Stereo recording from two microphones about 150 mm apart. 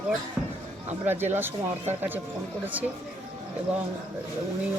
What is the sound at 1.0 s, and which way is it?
Speech, 15° right (ahead or behind).